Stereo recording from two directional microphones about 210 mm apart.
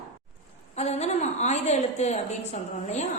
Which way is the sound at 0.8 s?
30° left (ahead or behind).